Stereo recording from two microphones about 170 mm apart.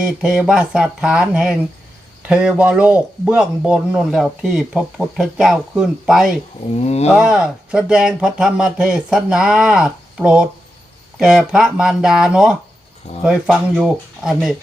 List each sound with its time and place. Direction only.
0.0 s speech: 5° right (ahead or behind)
6.7 s speech: 40° left (ahead or behind)
7.1 s speech: 5° right (ahead or behind)